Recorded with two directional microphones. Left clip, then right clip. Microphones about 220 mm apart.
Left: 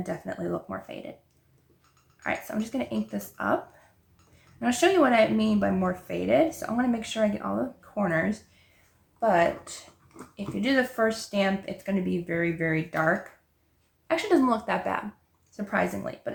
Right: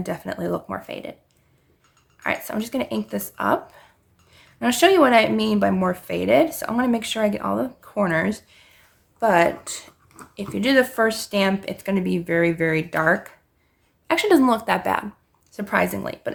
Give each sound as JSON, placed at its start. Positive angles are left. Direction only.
{"t": 0.0, "sound": "speech", "side_deg": -45}
{"t": 2.2, "sound": "speech", "side_deg": -45}
{"t": 4.6, "sound": "speech", "side_deg": -45}